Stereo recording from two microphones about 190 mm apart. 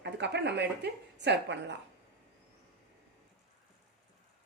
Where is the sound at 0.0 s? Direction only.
65° right (ahead or behind).